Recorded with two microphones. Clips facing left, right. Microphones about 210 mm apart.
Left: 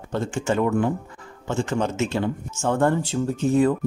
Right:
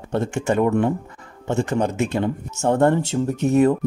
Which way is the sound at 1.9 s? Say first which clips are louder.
Right 2 dB; 55° right (ahead or behind).